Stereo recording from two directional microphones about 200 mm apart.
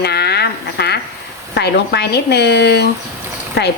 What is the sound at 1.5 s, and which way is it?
Stir, 55° left (ahead or behind).